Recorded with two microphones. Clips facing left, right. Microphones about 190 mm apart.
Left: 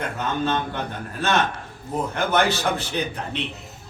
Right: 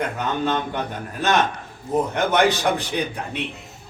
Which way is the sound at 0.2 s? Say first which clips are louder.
Left 2 dB; 15° right (ahead or behind).